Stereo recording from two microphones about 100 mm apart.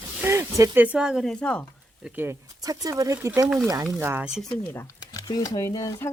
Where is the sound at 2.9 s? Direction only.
30° right (ahead or behind).